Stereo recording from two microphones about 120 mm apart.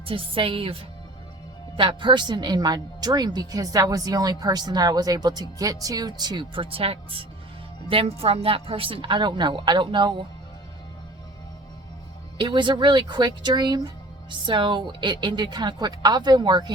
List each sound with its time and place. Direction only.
0.0 s a woman's voice: 45° right (ahead or behind)
12.4 s speech: 40° right (ahead or behind)